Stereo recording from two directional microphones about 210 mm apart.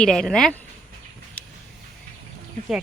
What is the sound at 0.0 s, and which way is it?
Speech, 5° left (ahead or behind).